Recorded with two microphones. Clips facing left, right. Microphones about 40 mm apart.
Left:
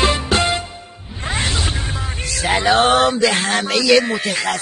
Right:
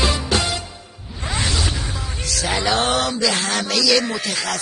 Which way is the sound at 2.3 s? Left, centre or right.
Left.